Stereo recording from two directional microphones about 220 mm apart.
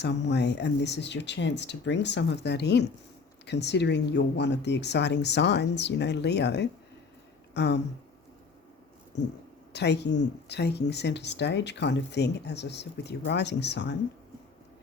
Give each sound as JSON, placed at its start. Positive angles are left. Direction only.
{"t": 0.0, "sound": "speech", "side_deg": 50}
{"t": 9.7, "sound": "speech", "side_deg": 50}